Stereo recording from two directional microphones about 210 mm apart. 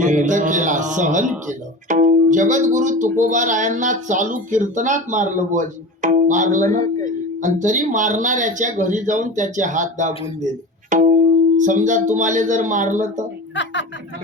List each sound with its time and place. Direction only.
0.0 s music: 35° right (ahead or behind)
1.5 s speech: 35° right (ahead or behind)